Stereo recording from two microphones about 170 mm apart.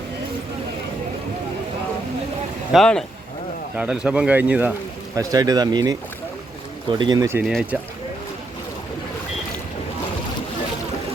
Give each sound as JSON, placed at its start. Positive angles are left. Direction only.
{"t": 2.7, "sound": "speech", "side_deg": 5}
{"t": 5.1, "sound": "speech", "side_deg": -20}
{"t": 7.0, "sound": "speech", "side_deg": -20}
{"t": 7.4, "sound": "speech", "side_deg": -5}